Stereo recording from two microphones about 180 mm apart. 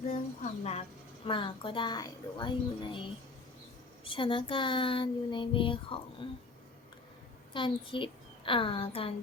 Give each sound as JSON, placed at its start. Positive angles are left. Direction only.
{"t": 0.4, "sound": "a woman's voice", "side_deg": 35}
{"t": 7.5, "sound": "a woman's voice", "side_deg": 30}